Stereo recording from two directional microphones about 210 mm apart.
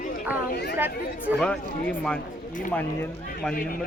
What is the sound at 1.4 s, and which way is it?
A woman's voice, 5° left (ahead or behind).